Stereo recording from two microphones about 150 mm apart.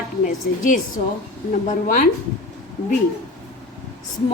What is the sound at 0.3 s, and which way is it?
A woman's voice, 60° left (ahead or behind).